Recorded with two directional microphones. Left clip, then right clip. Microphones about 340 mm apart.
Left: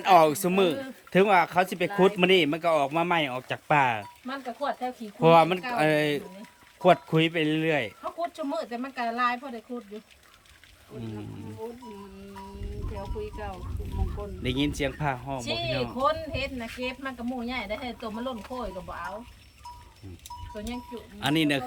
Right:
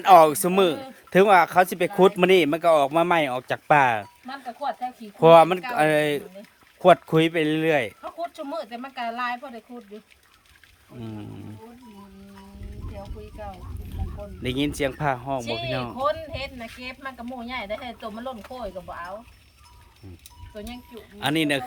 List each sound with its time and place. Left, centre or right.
0.0 s speech: centre
4.3 s speech: centre
14.4 s speech: centre
15.4 s speech: centre
15.7 s speech: centre
16.0 s speech: centre
20.5 s speech: centre